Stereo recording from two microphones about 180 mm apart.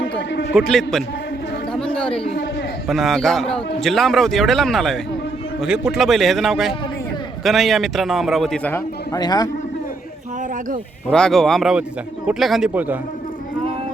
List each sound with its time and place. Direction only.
0.0 s a sound: 75° left (ahead or behind)
0.6 s a man's voice: 5° left (ahead or behind)
1.7 s chatter: 5° left (ahead or behind)
2.8 s a man's voice: centre (ahead or behind)
9.1 s a man's voice: 20° left (ahead or behind)
11.1 s a man's voice: 5° left (ahead or behind)